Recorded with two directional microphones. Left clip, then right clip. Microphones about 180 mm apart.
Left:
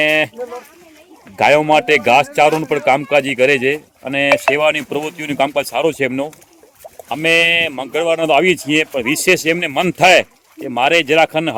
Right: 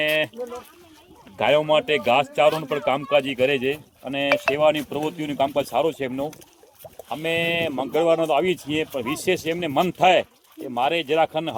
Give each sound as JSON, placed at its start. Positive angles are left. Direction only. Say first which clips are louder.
{"t": 0.0, "sound": "speech", "louder": "left 8 dB", "side_deg": 30}
{"t": 1.4, "sound": "a man's voice", "louder": "left 7 dB", "side_deg": 30}